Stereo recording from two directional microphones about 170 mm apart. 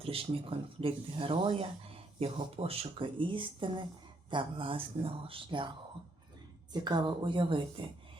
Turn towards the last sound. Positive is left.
turn(degrees=-30)  # may be behind; listen again after turning